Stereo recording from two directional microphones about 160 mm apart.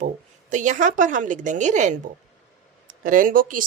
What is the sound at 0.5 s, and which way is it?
A woman's voice, 50° right (ahead or behind).